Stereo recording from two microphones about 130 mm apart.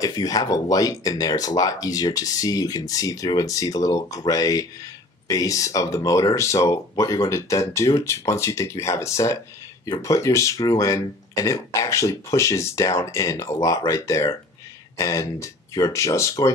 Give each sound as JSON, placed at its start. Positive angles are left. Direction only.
{"t": 0.0, "sound": "speech", "side_deg": 30}